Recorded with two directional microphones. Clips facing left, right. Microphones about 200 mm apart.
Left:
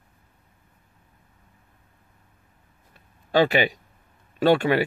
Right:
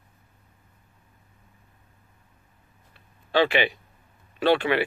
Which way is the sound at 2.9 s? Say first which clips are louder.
Left 4 dB; 40° left (ahead or behind).